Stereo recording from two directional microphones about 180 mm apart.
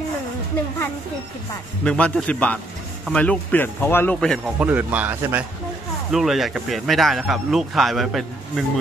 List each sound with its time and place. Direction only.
1.9 s speech: 5° left (ahead or behind)
4.6 s a man's voice: 10° right (ahead or behind)